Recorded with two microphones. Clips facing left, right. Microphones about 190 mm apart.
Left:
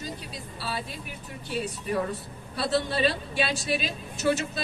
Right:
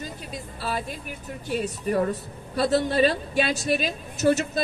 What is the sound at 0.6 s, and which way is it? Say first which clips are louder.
A woman's voice: right 4 dB; 50° right (ahead or behind).